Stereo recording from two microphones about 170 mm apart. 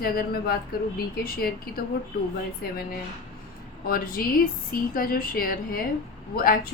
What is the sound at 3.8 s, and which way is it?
Speech, 60° left (ahead or behind).